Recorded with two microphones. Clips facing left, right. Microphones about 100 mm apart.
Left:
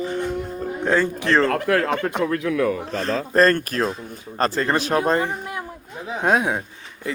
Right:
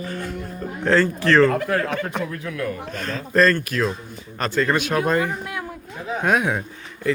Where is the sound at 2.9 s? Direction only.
35° left (ahead or behind).